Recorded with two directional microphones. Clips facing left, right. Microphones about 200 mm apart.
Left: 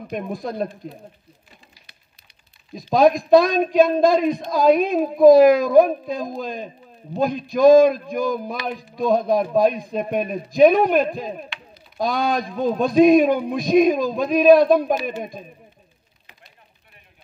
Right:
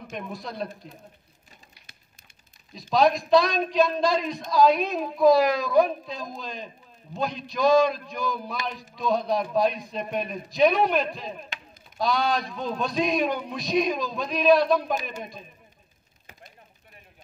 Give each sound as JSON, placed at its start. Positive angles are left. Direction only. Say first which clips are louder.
{"t": 0.3, "sound": "speech", "louder": "left 7 dB", "side_deg": 50}
{"t": 2.9, "sound": "speech", "louder": "left 6 dB", "side_deg": 50}